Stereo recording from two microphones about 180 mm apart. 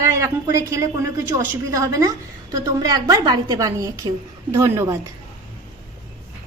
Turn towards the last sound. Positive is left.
turn(degrees=-15)  # may be behind; listen again after turning